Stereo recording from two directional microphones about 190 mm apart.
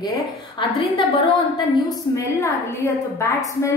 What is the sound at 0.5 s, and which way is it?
Speech, 25° left (ahead or behind).